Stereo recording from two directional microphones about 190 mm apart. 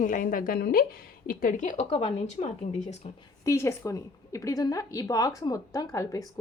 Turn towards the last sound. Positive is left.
turn(degrees=15)  # may be behind; listen again after turning